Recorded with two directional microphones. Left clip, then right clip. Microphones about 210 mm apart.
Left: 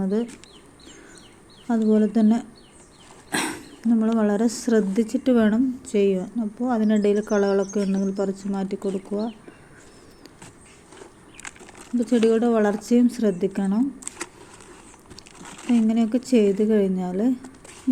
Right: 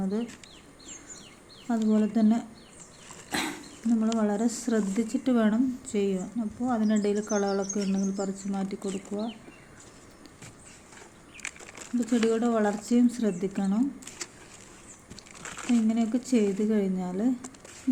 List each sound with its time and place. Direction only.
0.0 s speech: 15° left (ahead or behind)
1.6 s speech: 10° left (ahead or behind)
3.3 s a sound: 15° left (ahead or behind)
4.0 s speech: 10° left (ahead or behind)
11.9 s speech: 10° left (ahead or behind)
15.7 s speech: 10° left (ahead or behind)